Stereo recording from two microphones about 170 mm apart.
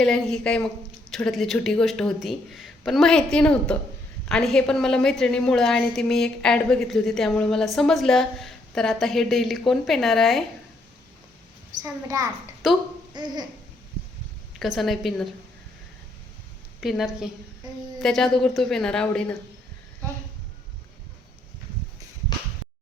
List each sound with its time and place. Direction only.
0.0 s a woman's voice: 5° left (ahead or behind)
11.8 s a child's voice: 20° right (ahead or behind)
12.6 s a woman's voice: centre (ahead or behind)
13.2 s a child's voice: 25° right (ahead or behind)
14.6 s a woman's voice: centre (ahead or behind)
16.8 s a woman's voice: centre (ahead or behind)